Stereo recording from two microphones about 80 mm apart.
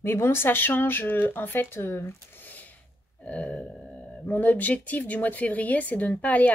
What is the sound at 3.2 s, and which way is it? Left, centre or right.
Grunt, centre.